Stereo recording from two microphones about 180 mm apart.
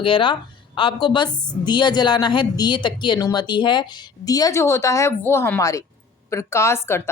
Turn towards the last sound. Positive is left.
turn(degrees=15)  # may be behind; listen again after turning